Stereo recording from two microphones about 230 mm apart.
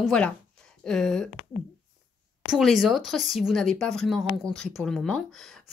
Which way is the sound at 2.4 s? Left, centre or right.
Centre.